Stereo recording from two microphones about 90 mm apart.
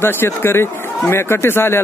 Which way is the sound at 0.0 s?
25° left (ahead or behind).